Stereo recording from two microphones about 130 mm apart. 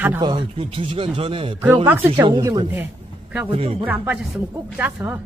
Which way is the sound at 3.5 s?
45° right (ahead or behind).